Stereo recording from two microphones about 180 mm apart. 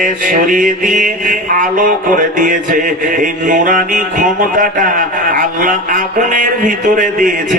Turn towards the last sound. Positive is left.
turn(degrees=-45)  # may be behind; listen again after turning